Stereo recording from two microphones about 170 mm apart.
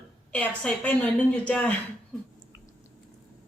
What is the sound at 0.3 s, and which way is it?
A woman's voice, 5° left (ahead or behind).